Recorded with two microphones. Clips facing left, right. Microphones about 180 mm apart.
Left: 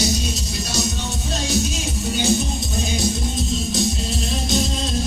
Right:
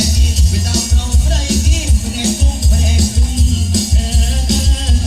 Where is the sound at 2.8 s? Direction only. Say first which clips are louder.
Right 2 dB; 90° right.